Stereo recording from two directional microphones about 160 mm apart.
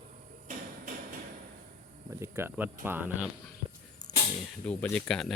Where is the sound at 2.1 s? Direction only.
15° right (ahead or behind).